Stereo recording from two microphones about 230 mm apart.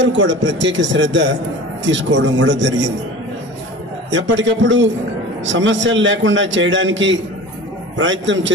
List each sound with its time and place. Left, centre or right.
0.0 s a man's voice: right
4.1 s a man's voice: right